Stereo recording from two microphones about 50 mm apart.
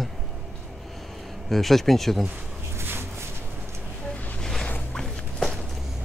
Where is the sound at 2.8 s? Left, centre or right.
Right.